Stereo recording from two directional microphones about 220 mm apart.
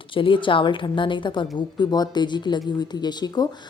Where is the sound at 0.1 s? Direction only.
25° left (ahead or behind).